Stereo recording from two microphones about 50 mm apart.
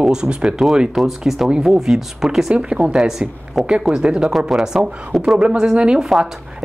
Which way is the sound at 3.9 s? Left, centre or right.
Centre.